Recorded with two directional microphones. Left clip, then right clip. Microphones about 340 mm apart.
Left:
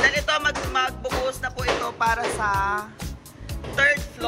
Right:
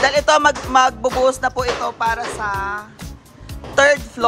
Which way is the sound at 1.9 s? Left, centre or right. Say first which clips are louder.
Right 3 dB; centre.